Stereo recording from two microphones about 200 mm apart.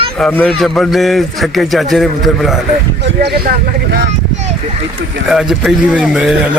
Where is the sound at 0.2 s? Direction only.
5° left (ahead or behind).